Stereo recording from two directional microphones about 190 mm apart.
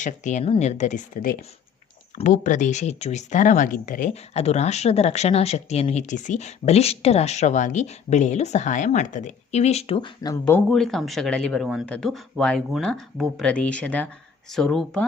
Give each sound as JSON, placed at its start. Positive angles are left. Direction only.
{"t": 0.0, "sound": "speech", "side_deg": 40}
{"t": 10.7, "sound": "speech", "side_deg": 0}